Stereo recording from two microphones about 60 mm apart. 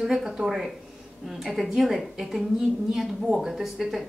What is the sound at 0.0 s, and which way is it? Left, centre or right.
A woman's voice, centre.